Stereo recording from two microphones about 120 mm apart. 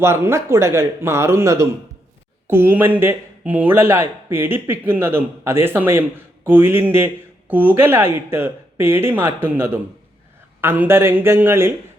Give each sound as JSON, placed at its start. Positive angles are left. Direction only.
{"t": 0.0, "sound": "speech", "side_deg": -20}